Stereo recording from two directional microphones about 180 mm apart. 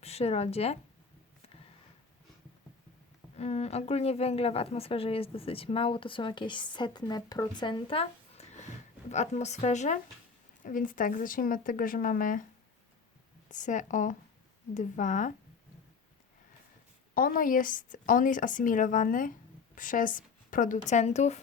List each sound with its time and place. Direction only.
0.0 s speech: 35° left (ahead or behind)
3.3 s speech: 35° left (ahead or behind)
13.5 s speech: 45° left (ahead or behind)
17.2 s speech: 50° left (ahead or behind)